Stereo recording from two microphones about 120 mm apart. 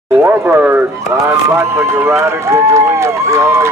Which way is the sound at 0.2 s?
15° right (ahead or behind).